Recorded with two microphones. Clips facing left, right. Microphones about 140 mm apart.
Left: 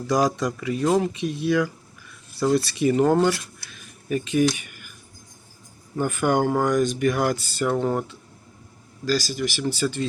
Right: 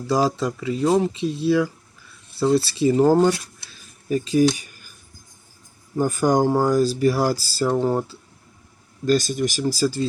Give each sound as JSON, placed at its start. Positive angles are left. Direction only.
{"t": 0.1, "sound": "speech", "side_deg": -30}
{"t": 6.0, "sound": "speech", "side_deg": -35}
{"t": 9.0, "sound": "speech", "side_deg": -50}